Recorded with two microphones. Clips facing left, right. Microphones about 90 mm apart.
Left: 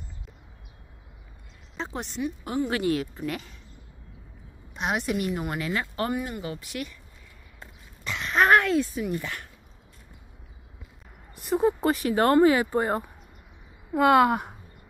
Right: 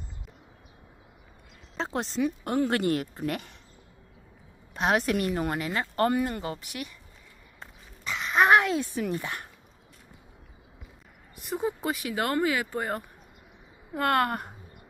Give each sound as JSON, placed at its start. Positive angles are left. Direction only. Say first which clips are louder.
{"t": 2.4, "sound": "a woman's voice", "louder": "left 1 dB", "side_deg": -50}
{"t": 4.7, "sound": "a woman's voice", "louder": "right 2 dB", "side_deg": -45}
{"t": 5.6, "sound": "speech", "louder": "left 1 dB", "side_deg": -30}
{"t": 5.9, "sound": "speech", "louder": "right 4 dB", "side_deg": -45}
{"t": 6.7, "sound": "speech", "louder": "left 3 dB", "side_deg": -25}
{"t": 8.0, "sound": "a sound", "louder": "even", "side_deg": 0}
{"t": 8.4, "sound": "a sound", "louder": "left 1 dB", "side_deg": -15}
{"t": 9.1, "sound": "speech", "louder": "left 1 dB", "side_deg": -25}
{"t": 11.5, "sound": "speech", "louder": "left 7 dB", "side_deg": 50}
{"t": 13.9, "sound": "speech", "louder": "left 6 dB", "side_deg": 10}